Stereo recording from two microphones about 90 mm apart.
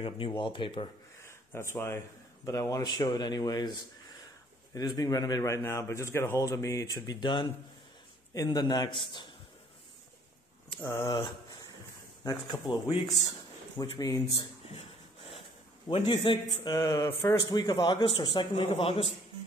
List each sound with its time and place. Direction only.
0.3 s speech: 65° left (ahead or behind)
1.2 s gasp: 30° left (ahead or behind)
2.4 s speech: 35° left (ahead or behind)
2.8 s speech: 55° left (ahead or behind)
4.7 s speech: 45° left (ahead or behind)
7.2 s a man's voice: 60° left (ahead or behind)
8.4 s speech: 45° left (ahead or behind); by 9.3 s 65° left (ahead or behind)
10.9 s a man's voice: 60° left (ahead or behind)
12.2 s a man's voice: 45° left (ahead or behind); by 13.0 s 65° left (ahead or behind)
13.7 s speech: 40° left (ahead or behind)
15.9 s a man's voice: 90° left
16.6 s a man's voice: 50° left (ahead or behind); by 19.0 s 90° left